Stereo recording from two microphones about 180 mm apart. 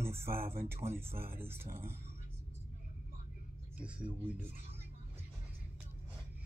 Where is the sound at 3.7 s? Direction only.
5° right (ahead or behind).